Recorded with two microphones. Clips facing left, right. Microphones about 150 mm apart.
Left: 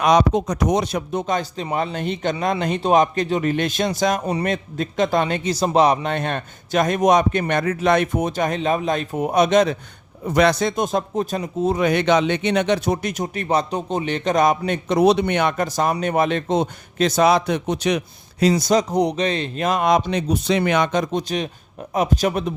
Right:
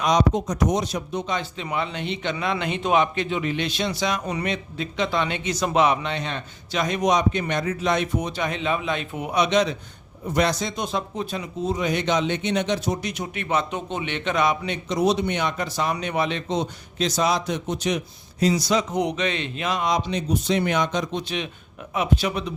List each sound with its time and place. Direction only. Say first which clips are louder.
0.0 s a man's voice: left 4 dB; 60° left (ahead or behind)
10.2 s speech: left 6 dB; 75° left (ahead or behind)
18.6 s a man's voice: left 5 dB; 40° left (ahead or behind)